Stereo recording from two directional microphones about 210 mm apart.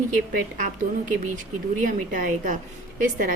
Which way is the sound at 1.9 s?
40° right (ahead or behind).